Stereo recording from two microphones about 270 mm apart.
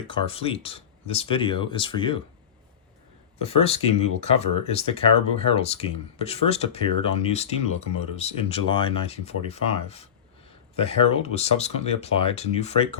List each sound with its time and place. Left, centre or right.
0.1 s speech: centre
3.3 s speech: left